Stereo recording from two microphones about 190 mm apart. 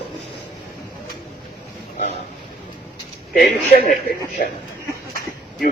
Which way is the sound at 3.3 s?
50° left (ahead or behind).